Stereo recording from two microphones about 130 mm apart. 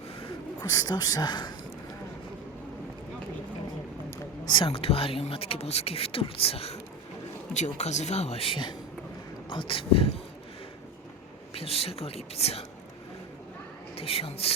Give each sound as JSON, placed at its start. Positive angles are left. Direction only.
{"t": 0.6, "sound": "speech", "side_deg": 30}
{"t": 4.5, "sound": "speech", "side_deg": 45}
{"t": 7.5, "sound": "speech", "side_deg": 65}
{"t": 11.5, "sound": "speech", "side_deg": 50}
{"t": 13.9, "sound": "speech", "side_deg": 50}